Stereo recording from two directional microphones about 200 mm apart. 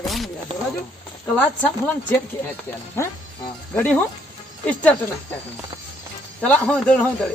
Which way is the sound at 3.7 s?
5° left (ahead or behind).